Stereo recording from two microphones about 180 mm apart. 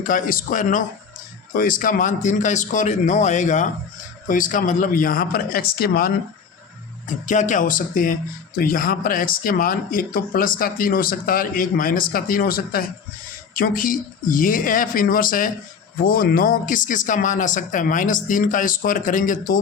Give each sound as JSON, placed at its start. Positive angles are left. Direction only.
{"t": 0.0, "sound": "speech", "side_deg": 50}
{"t": 7.3, "sound": "speech", "side_deg": 45}